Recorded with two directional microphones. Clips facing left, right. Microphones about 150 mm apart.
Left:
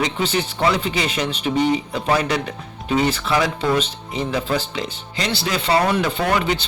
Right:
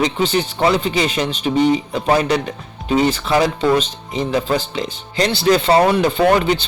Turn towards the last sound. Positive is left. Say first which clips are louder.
# right 6 dB
turn(degrees=-35)  # may be behind; listen again after turning